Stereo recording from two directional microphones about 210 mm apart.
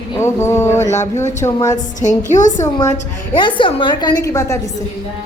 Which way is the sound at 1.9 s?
35° left (ahead or behind).